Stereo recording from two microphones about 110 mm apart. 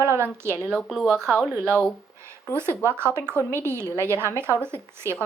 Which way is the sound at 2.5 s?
25° right (ahead or behind).